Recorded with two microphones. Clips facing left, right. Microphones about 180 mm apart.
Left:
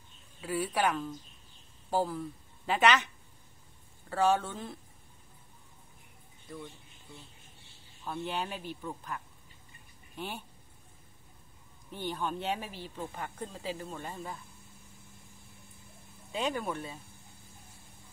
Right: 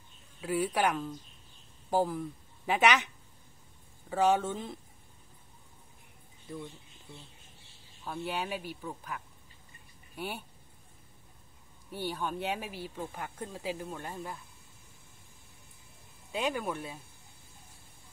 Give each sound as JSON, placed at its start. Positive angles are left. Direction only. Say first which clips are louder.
{"t": 0.5, "sound": "a woman's voice", "louder": "right 1 dB", "side_deg": -15}
{"t": 4.1, "sound": "speech", "louder": "right 1 dB", "side_deg": -15}
{"t": 8.0, "sound": "speech", "louder": "even", "side_deg": -5}
{"t": 11.9, "sound": "speech", "louder": "even", "side_deg": -10}
{"t": 16.3, "sound": "speech", "louder": "even", "side_deg": -5}